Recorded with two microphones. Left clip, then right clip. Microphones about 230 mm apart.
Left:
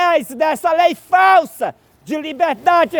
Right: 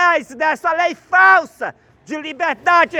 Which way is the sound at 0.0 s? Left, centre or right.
Left.